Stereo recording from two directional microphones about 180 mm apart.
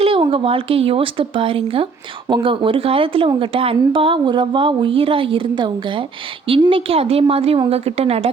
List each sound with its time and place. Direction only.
0.0 s a woman's voice: 30° right (ahead or behind)